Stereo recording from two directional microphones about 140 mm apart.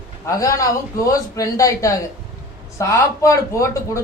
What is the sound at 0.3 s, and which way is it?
Speech, 25° left (ahead or behind).